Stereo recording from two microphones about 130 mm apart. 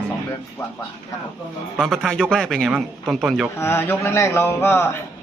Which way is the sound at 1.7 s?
Centre (ahead or behind).